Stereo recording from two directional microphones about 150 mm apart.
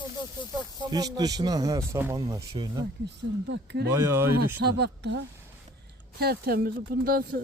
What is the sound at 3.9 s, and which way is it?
Speech, 15° right (ahead or behind).